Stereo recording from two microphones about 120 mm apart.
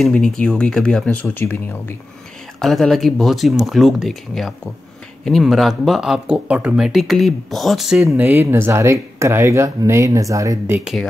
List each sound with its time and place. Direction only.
0.0 s speech: 5° left (ahead or behind)
2.6 s speech: centre (ahead or behind)
8.0 s speech: 20° right (ahead or behind)
10.8 s speech: 5° right (ahead or behind)